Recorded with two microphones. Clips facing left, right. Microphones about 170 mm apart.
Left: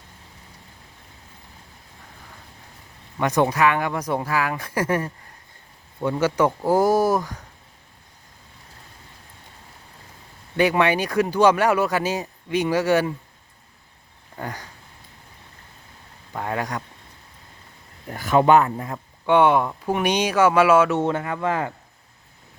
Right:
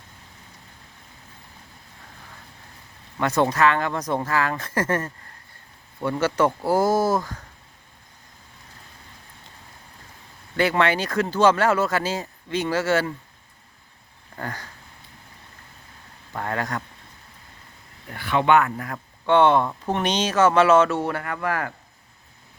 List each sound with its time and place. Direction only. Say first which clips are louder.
3.2 s speech: left 1 dB; 15° left (ahead or behind)
10.6 s speech: left 2 dB; 15° left (ahead or behind)
14.3 s speech: left 1 dB; 15° left (ahead or behind)
16.3 s speech: left 1 dB; 10° left (ahead or behind)
18.1 s speech: left 3 dB; 40° left (ahead or behind)
19.2 s speech: even; 10° left (ahead or behind)
21.0 s speech: left 3 dB; 20° left (ahead or behind)